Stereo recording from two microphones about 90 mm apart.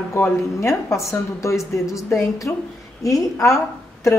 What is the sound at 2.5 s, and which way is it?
Speech, 25° left (ahead or behind).